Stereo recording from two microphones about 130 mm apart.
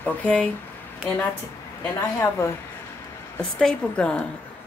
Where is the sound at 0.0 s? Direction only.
10° left (ahead or behind).